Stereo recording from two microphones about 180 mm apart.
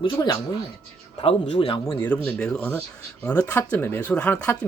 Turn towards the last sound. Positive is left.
turn(degrees=5)  # may be behind; listen again after turning